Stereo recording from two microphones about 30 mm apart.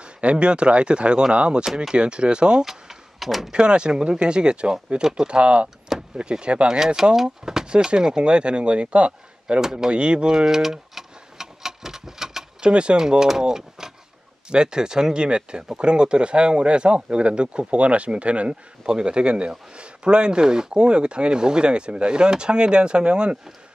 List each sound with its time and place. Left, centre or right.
0.0 s speech: right
2.6 s a sound: centre
3.5 s speech: right
5.9 s vehicle: centre
6.4 s speech: right
7.2 s speech: centre
7.6 s speech: right
9.6 s speech: centre
9.8 s speech: right
10.3 s vehicle: centre
12.6 s speech: right
13.4 s speech: centre
14.5 s speech: right
18.5 s speech: right